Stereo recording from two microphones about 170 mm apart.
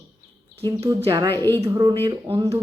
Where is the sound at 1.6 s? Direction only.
20° right (ahead or behind).